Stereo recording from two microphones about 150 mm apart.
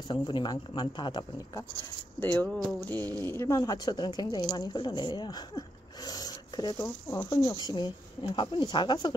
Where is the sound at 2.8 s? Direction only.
15° left (ahead or behind); by 9.1 s 30° left (ahead or behind).